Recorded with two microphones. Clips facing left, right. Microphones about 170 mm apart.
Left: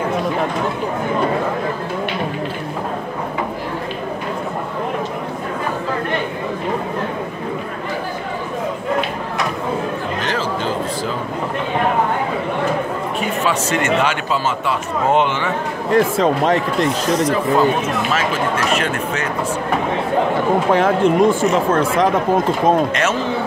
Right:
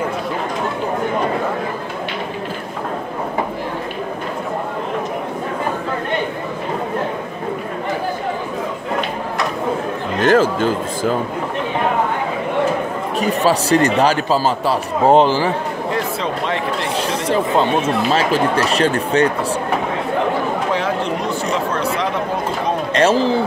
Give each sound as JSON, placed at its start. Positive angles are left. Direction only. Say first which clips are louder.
{"t": 10.2, "sound": "a sound", "louder": "right 11 dB", "side_deg": -50}
{"t": 13.2, "sound": "speech", "louder": "right 5 dB", "side_deg": -35}
{"t": 15.9, "sound": "speech", "louder": "left 9 dB", "side_deg": 45}
{"t": 16.8, "sound": "speech", "louder": "left 4 dB", "side_deg": -30}
{"t": 20.7, "sound": "speech", "louder": "left 6 dB", "side_deg": 50}
{"t": 22.9, "sound": "speech", "louder": "right 5 dB", "side_deg": -30}